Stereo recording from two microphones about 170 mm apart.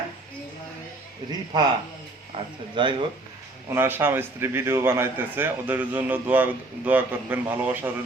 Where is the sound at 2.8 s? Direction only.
25° right (ahead or behind).